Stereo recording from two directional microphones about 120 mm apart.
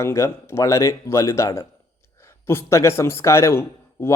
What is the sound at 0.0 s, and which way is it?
Speech, 20° left (ahead or behind).